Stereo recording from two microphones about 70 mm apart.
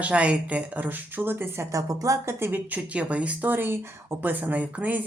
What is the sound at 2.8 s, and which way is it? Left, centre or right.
Speech, centre.